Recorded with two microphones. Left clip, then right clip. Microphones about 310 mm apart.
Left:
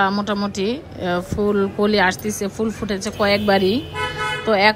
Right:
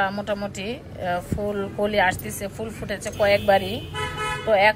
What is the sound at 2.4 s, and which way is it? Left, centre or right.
A woman's voice, left.